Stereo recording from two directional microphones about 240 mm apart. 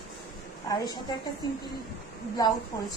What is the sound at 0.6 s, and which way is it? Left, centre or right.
Speech, centre.